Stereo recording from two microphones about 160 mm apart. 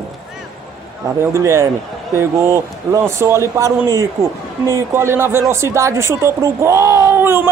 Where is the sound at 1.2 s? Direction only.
20° right (ahead or behind).